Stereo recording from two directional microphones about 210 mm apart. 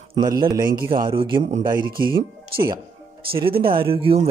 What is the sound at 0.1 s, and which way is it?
A man's voice, 20° right (ahead or behind).